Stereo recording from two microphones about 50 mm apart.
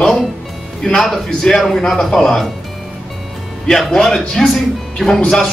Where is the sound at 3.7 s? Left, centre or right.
Centre.